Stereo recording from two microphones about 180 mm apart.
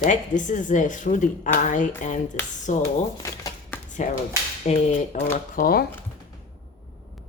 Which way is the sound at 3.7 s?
10° left (ahead or behind).